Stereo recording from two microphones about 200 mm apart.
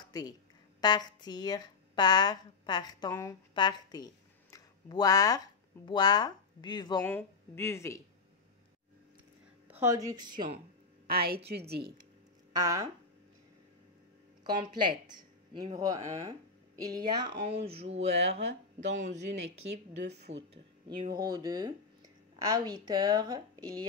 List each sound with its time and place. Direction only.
0.1 s a woman's voice: 20° left (ahead or behind)
7.0 s speech: 10° left (ahead or behind)
9.7 s speech: 10° right (ahead or behind)
11.1 s a woman's voice: 50° right (ahead or behind)
12.5 s speech: 15° right (ahead or behind)
14.4 s speech: 20° right (ahead or behind)
20.5 s speech: 25° right (ahead or behind)